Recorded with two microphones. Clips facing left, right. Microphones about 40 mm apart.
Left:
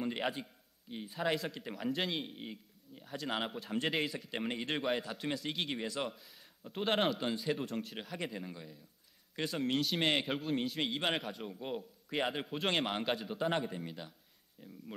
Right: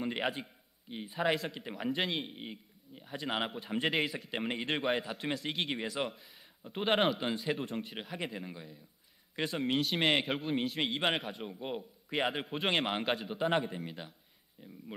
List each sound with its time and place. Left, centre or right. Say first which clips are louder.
0.0 s a man's voice: right 2 dB; centre